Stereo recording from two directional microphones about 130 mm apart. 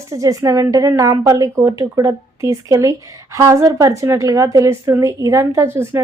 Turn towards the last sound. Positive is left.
turn(degrees=-20)  # may be behind; listen again after turning